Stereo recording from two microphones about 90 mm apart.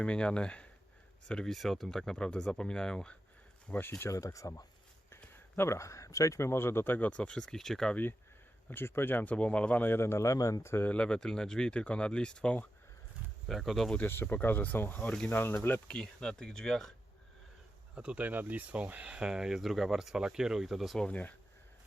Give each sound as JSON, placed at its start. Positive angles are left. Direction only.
{"t": 0.0, "sound": "speech", "side_deg": 10}
{"t": 3.7, "sound": "a man's voice", "side_deg": 20}
{"t": 4.1, "sound": "a man's voice", "side_deg": 40}
{"t": 8.7, "sound": "a man's voice", "side_deg": 25}
{"t": 10.9, "sound": "speech", "side_deg": 10}
{"t": 13.5, "sound": "speech", "side_deg": 0}
{"t": 13.9, "sound": "a man's voice", "side_deg": 25}
{"t": 16.0, "sound": "speech", "side_deg": 5}
{"t": 17.9, "sound": "speech", "side_deg": -15}
{"t": 21.1, "sound": "speech", "side_deg": 20}